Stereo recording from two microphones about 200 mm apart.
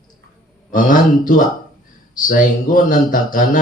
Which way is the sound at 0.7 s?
45° left (ahead or behind).